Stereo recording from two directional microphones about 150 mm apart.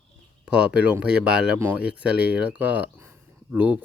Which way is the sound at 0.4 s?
5° right (ahead or behind).